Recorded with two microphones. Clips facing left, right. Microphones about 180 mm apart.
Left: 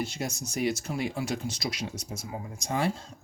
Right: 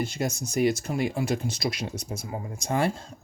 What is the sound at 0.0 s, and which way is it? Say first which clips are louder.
Speech: right 4 dB; 55° right (ahead or behind).